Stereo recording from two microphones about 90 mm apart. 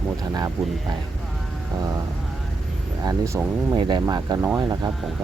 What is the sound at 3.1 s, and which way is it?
Speech, 35° right (ahead or behind).